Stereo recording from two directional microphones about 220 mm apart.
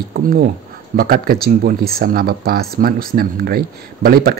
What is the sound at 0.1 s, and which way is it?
Speech, 45° right (ahead or behind).